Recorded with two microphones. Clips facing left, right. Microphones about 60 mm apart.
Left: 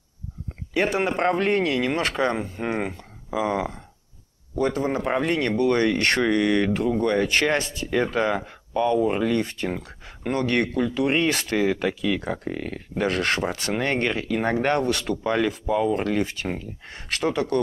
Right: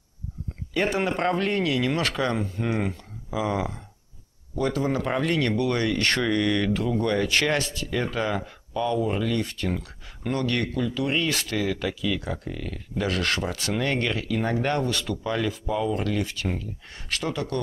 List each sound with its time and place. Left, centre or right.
0.9 s speech: centre
4.6 s speech: left
6.1 s speech: centre; by 17.6 s left